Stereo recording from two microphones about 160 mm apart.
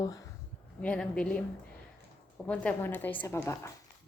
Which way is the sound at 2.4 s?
10° left (ahead or behind).